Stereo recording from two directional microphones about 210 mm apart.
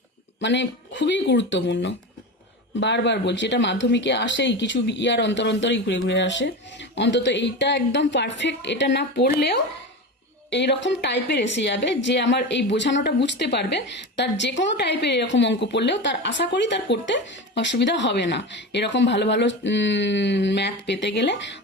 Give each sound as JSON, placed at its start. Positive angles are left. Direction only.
{"t": 0.3, "sound": "a woman's voice", "side_deg": 60}